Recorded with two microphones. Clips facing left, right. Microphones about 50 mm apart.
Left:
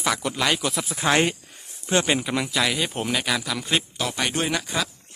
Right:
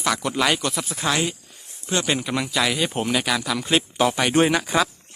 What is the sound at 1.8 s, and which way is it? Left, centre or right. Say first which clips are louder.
Speech: left 2 dB; left.